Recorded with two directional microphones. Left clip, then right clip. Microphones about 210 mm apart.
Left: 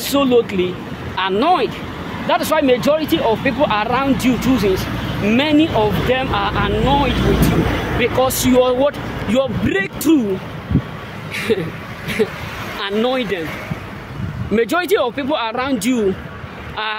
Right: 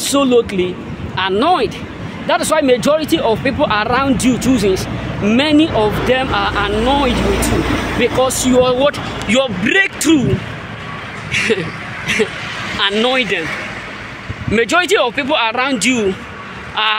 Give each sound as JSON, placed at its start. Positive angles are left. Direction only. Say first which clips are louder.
{"t": 0.0, "sound": "speech", "louder": "right 2 dB", "side_deg": -10}
{"t": 11.3, "sound": "speech", "louder": "right 4 dB", "side_deg": 5}
{"t": 14.5, "sound": "speech", "louder": "right 3 dB", "side_deg": 5}